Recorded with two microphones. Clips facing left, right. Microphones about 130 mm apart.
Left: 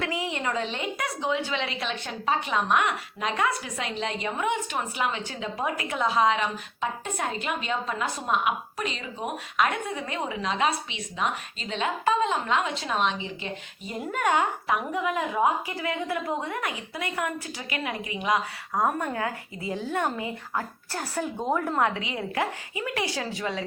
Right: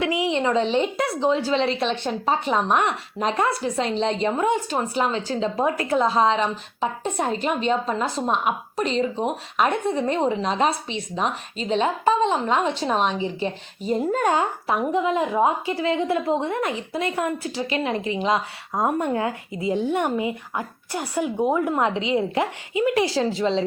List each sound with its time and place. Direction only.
0.0 s a woman's voice: 20° right (ahead or behind)